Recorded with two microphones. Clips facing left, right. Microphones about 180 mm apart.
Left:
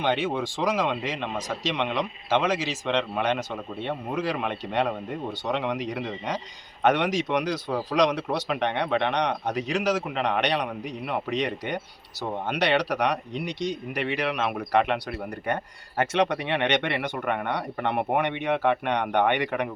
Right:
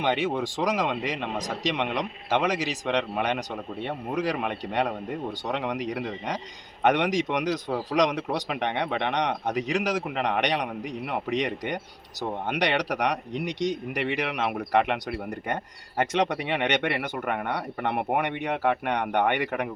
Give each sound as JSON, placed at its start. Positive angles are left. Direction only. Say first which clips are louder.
{"t": 0.0, "sound": "speech", "louder": "even", "side_deg": -15}